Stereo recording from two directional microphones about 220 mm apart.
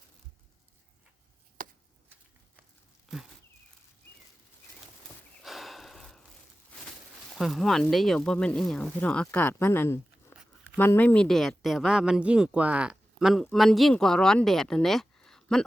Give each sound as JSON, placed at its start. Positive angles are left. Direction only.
{"t": 1.6, "sound": "chop", "side_deg": -40}
{"t": 5.4, "sound": "snort", "side_deg": 0}
{"t": 7.3, "sound": "speech", "side_deg": 0}